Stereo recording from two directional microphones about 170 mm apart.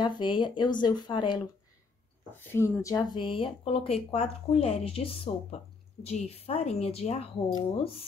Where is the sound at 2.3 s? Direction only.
15° left (ahead or behind); by 7.2 s 40° left (ahead or behind).